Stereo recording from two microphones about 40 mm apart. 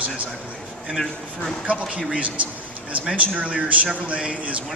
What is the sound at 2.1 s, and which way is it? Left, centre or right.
A man's voice, right.